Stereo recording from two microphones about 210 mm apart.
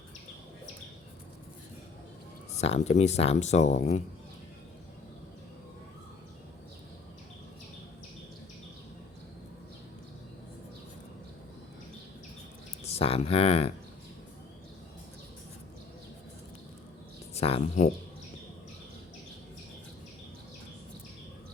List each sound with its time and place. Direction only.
2.6 s speech: 30° left (ahead or behind)
12.8 s speech: 30° left (ahead or behind)
17.3 s speech: 30° left (ahead or behind)